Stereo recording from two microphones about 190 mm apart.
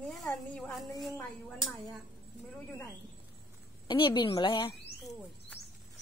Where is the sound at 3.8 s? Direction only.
25° left (ahead or behind).